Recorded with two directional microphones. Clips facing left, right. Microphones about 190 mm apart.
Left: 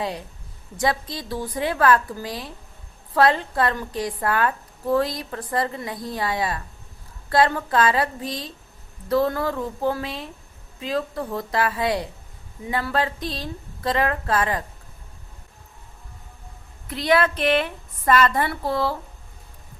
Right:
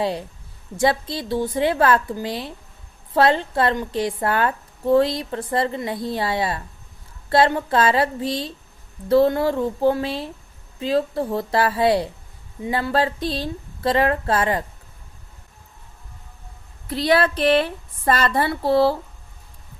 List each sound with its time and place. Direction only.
0.8 s a woman's voice: 30° right (ahead or behind)
16.9 s a woman's voice: 35° right (ahead or behind)